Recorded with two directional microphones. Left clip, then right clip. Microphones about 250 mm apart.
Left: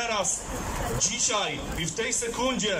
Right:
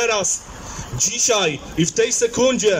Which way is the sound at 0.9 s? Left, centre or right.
Right.